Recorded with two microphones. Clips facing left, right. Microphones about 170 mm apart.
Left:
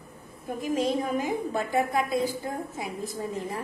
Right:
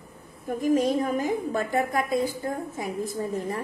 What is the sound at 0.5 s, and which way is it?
A woman's voice, 45° right (ahead or behind).